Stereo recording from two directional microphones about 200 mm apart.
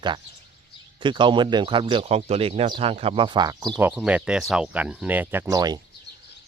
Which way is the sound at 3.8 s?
5° right (ahead or behind).